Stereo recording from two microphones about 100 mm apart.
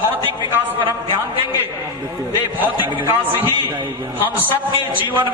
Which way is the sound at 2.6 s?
20° right (ahead or behind).